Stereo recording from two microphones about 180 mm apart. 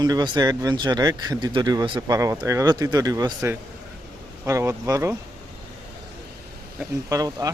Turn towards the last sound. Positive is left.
turn(degrees=-20)  # may be behind; listen again after turning